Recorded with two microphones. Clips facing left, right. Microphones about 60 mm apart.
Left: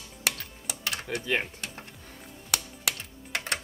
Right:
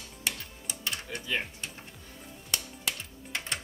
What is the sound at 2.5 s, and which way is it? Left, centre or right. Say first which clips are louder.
Music: left 3 dB; left.